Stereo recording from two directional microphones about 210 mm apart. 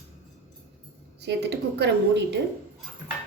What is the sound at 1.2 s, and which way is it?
A woman's voice, 55° right (ahead or behind).